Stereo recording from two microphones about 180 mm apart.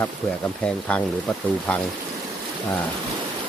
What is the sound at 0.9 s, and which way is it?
Speech, 5° left (ahead or behind).